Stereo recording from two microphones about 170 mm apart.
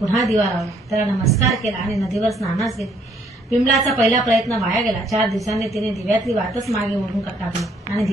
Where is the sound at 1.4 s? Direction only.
Centre (ahead or behind).